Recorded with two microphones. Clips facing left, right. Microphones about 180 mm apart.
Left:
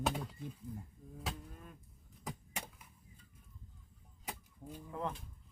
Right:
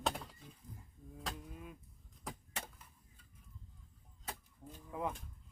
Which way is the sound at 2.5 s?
10° left (ahead or behind).